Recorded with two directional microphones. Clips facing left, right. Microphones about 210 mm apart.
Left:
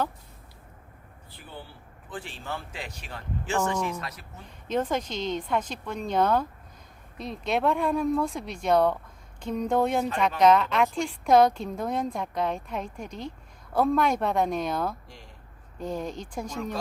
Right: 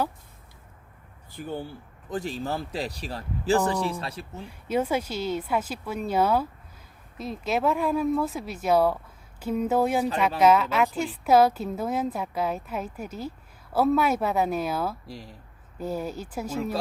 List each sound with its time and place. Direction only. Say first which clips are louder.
1.3 s a man's voice: right 10 dB; 45° right (ahead or behind); by 4.3 s 30° right (ahead or behind)
4.4 s a woman's voice: right 1 dB; 10° right (ahead or behind)
15.0 s a man's voice: right 8 dB; 35° right (ahead or behind)
15.8 s speech: right 2 dB; 5° right (ahead or behind)